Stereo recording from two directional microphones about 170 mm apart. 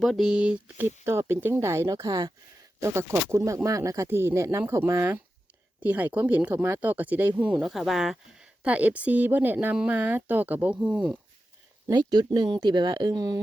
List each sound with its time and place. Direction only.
0.0 s speech: centre (ahead or behind)
11.9 s speech: 25° right (ahead or behind)